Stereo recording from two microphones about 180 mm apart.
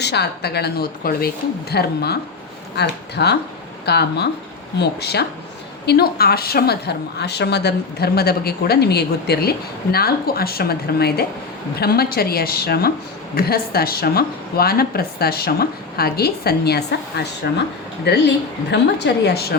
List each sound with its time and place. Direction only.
0.0 s a woman's voice: 65° left (ahead or behind)